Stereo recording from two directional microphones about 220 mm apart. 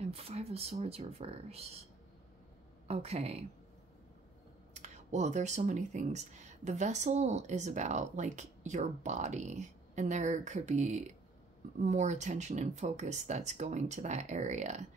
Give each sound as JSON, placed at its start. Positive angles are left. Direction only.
{"t": 0.0, "sound": "speech", "side_deg": -25}
{"t": 2.9, "sound": "speech", "side_deg": -30}
{"t": 4.7, "sound": "speech", "side_deg": -30}